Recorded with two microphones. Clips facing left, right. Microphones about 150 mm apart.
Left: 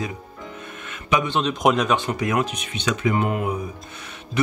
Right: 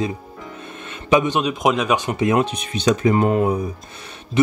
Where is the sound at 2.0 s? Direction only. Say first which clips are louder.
Right 4 dB; 20° right (ahead or behind).